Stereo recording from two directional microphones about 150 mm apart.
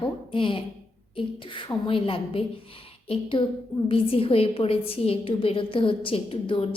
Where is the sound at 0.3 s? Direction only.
35° left (ahead or behind).